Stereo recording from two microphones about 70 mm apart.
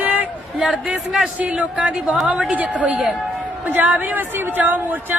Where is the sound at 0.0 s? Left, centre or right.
Right.